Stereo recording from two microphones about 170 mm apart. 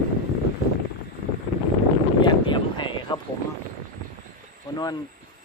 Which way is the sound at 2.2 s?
30° left (ahead or behind).